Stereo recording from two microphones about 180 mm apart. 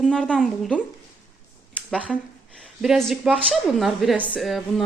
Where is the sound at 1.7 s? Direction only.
5° right (ahead or behind).